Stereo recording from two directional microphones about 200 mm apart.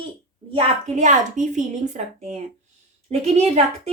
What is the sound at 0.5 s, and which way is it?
A woman's voice, 35° right (ahead or behind).